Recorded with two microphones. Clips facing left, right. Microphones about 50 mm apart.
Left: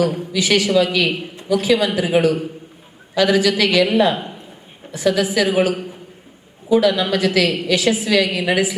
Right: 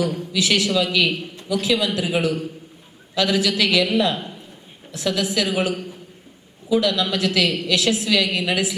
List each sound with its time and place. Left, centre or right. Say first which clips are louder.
0.0 s a man's voice: left 3 dB; centre
0.7 s a man's voice: left 4 dB; centre